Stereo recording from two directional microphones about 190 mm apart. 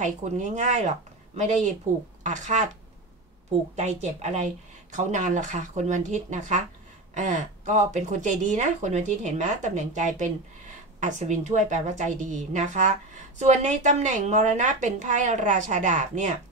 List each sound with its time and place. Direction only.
0.0 s speech: 40° right (ahead or behind)
3.7 s speech: 35° right (ahead or behind)